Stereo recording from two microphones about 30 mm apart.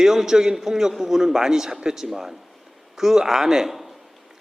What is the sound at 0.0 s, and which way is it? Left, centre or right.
A man's voice, centre.